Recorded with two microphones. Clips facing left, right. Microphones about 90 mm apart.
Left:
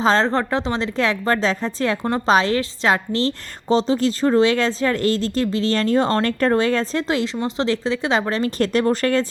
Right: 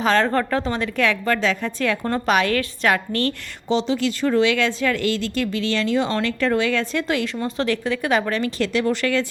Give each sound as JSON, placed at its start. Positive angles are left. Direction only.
{"t": 0.0, "sound": "a woman's voice", "side_deg": 30}
{"t": 2.0, "sound": "a woman's voice", "side_deg": 20}
{"t": 3.7, "sound": "speech", "side_deg": 40}